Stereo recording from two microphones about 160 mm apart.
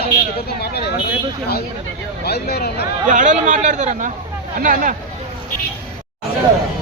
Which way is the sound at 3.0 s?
55° right (ahead or behind).